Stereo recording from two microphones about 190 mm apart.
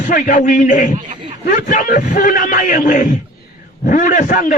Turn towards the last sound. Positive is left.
turn(degrees=45)  # may be behind; listen again after turning